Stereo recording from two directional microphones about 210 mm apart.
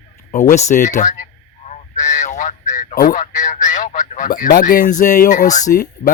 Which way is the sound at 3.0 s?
35° left (ahead or behind).